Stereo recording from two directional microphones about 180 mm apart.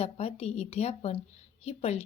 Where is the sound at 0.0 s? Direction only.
35° left (ahead or behind).